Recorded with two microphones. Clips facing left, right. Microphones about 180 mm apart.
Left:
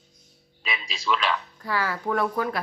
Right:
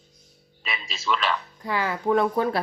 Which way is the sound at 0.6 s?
Centre (ahead or behind).